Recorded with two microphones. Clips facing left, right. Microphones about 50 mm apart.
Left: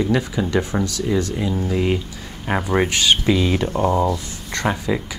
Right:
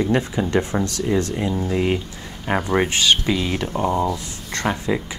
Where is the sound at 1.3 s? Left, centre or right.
Right.